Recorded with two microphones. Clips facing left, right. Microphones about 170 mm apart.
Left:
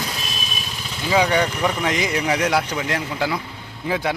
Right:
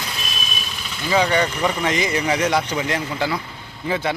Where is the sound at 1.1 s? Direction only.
5° left (ahead or behind).